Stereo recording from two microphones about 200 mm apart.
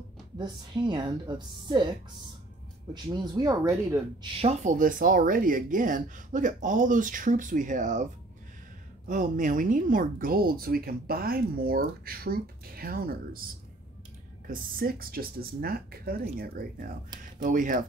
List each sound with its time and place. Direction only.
0.4 s a woman's voice: 25° right (ahead or behind)
2.9 s speech: 20° right (ahead or behind); by 8.0 s 40° right (ahead or behind)
9.0 s a woman's voice: 40° right (ahead or behind)
14.5 s a woman's voice: 45° right (ahead or behind)